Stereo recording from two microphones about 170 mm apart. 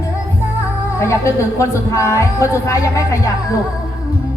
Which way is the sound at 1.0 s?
15° left (ahead or behind).